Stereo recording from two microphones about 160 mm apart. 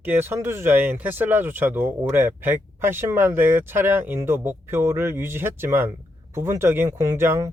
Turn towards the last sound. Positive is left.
turn(degrees=-15)  # may be behind; listen again after turning